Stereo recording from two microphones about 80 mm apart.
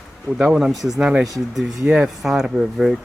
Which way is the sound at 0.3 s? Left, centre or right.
Centre.